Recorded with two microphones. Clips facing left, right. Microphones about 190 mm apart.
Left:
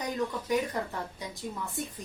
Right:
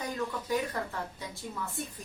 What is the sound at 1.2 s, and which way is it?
Speech, 15° left (ahead or behind).